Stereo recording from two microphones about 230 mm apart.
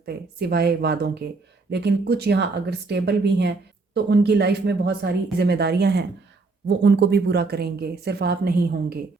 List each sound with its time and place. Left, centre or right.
0.0 s a woman's voice: right